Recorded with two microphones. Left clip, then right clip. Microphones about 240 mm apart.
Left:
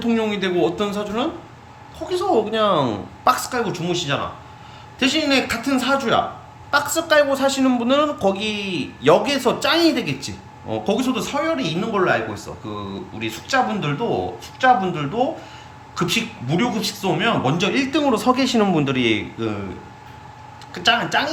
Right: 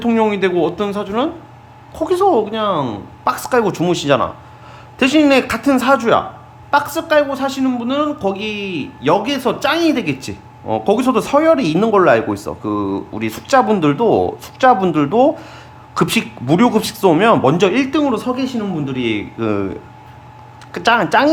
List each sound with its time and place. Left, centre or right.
0.0 s a man's voice: centre
20.7 s speech: centre